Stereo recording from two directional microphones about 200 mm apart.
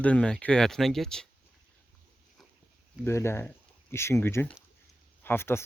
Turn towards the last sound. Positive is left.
turn(degrees=10)  # may be behind; listen again after turning